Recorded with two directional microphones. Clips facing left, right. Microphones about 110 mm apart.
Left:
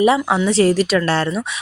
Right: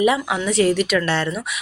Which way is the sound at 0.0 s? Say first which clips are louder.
Left 4 dB; 30° left (ahead or behind).